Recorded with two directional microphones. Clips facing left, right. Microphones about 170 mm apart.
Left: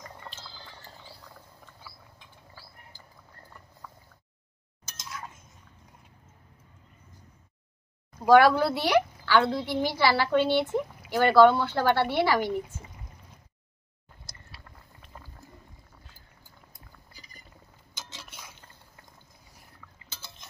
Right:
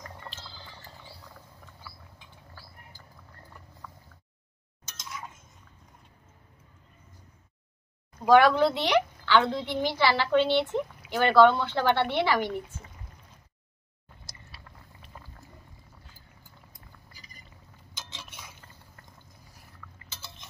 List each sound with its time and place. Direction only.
0.0 s music: centre (ahead or behind)
1.2 s a sound: centre (ahead or behind)
4.9 s chink: centre (ahead or behind)
8.3 s a woman's voice: 10° left (ahead or behind)
17.9 s dishes: 10° left (ahead or behind)